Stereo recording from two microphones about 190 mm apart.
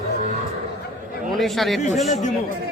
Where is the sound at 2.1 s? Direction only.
40° left (ahead or behind).